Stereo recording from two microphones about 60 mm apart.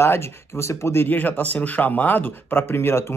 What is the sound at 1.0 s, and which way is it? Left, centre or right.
Speech, left.